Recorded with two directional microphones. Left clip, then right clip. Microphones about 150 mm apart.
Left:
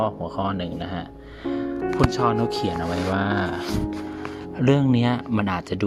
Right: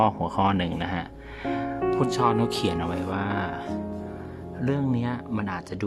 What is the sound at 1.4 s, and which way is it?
Music, centre (ahead or behind).